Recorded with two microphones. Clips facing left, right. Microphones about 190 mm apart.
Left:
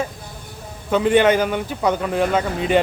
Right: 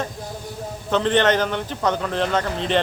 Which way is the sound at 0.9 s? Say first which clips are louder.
Left 3 dB; 10° left (ahead or behind).